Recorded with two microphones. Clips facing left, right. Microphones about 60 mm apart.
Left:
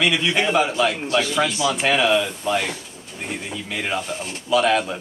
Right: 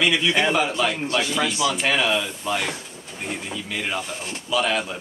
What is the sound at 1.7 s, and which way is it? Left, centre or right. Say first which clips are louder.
A man's voice: left 3 dB; centre.